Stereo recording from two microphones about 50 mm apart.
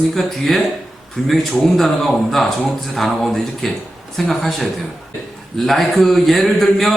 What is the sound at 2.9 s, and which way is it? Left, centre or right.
A man's voice, centre.